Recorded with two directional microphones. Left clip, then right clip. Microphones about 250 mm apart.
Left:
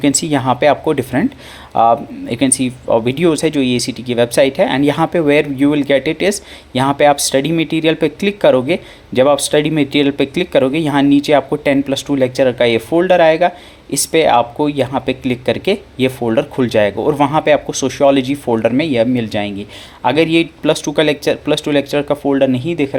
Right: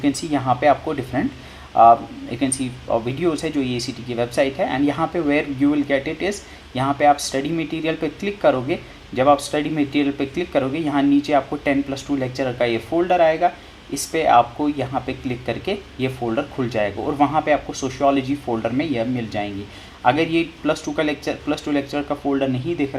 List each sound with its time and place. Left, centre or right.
0.0 s speech: left